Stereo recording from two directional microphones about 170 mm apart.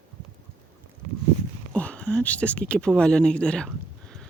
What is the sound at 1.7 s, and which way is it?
Speech, 5° left (ahead or behind).